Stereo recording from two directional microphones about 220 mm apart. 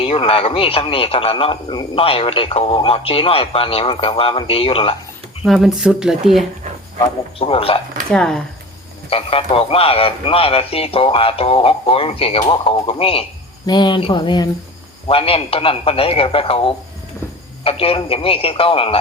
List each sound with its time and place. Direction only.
0.0 s speech: 25° left (ahead or behind)
5.5 s speech: centre (ahead or behind)
7.3 s speech: 25° left (ahead or behind)
8.1 s speech: 5° left (ahead or behind)
9.0 s speech: 25° left (ahead or behind)